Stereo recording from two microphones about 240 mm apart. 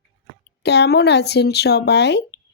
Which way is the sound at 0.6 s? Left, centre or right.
Left.